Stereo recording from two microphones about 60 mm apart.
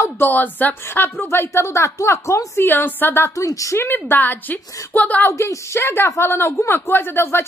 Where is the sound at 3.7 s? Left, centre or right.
Left.